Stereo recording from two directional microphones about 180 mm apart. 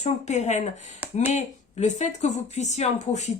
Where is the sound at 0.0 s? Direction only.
40° left (ahead or behind).